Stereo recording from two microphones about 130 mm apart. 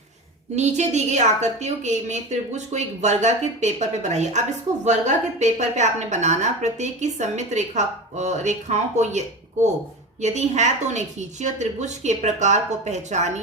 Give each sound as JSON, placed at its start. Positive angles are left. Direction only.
{"t": 0.5, "sound": "a woman's voice", "side_deg": -60}